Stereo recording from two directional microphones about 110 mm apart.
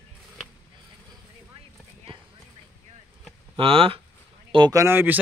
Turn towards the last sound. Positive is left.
turn(degrees=-20)  # may be behind; listen again after turning